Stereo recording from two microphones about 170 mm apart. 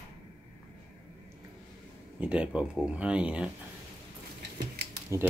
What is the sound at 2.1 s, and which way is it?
Speech, 5° right (ahead or behind).